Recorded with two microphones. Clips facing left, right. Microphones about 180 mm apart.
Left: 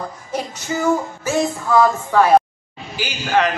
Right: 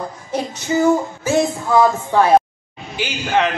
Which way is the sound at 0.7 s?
20° right (ahead or behind).